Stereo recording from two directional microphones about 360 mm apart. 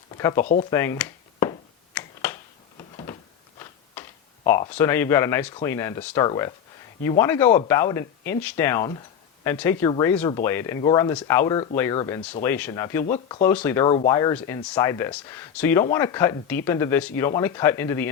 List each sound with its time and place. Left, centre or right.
0.2 s speech: centre
0.7 s a sound: centre
4.4 s speech: centre